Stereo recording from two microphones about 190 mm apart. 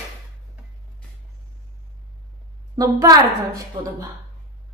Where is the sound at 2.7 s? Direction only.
15° right (ahead or behind).